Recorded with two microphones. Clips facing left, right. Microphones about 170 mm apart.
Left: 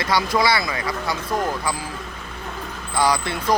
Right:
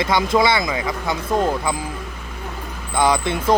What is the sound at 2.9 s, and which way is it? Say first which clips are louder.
Speech: right 3 dB; 20° right (ahead or behind).